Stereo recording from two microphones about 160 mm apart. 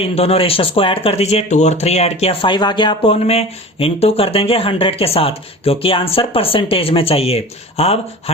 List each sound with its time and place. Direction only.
0.0 s speech: 35° left (ahead or behind)